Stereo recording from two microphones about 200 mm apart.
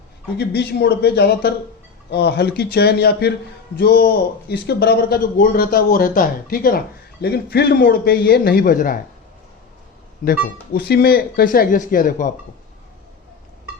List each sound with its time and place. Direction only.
0.3 s speech: 55° left (ahead or behind)
10.2 s speech: 40° left (ahead or behind)
10.8 s speech: 50° left (ahead or behind)